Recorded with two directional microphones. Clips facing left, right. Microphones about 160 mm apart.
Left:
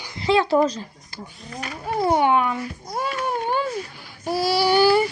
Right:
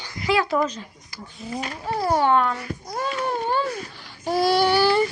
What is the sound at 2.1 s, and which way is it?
Speech, 15° left (ahead or behind).